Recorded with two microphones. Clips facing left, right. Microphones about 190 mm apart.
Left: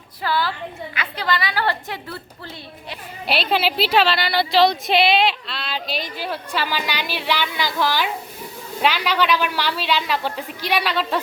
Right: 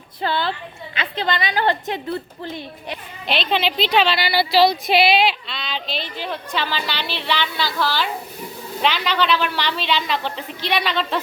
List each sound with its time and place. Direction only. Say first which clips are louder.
0.2 s a woman's voice: even; 25° right (ahead or behind)
3.2 s a woman's voice: left 1 dB; 5° left (ahead or behind)